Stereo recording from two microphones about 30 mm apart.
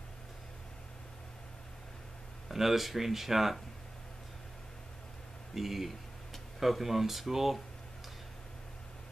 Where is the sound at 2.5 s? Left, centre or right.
Centre.